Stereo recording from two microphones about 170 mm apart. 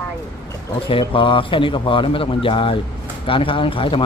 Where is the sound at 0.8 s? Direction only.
30° left (ahead or behind).